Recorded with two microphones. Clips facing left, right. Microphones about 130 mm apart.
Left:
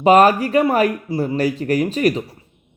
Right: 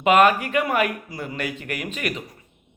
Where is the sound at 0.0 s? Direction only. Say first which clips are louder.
Left 5 dB; 35° left (ahead or behind).